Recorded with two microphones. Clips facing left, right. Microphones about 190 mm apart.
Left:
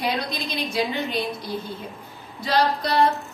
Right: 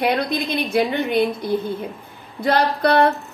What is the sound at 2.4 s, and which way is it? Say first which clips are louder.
Speech: right 4 dB; 55° right (ahead or behind).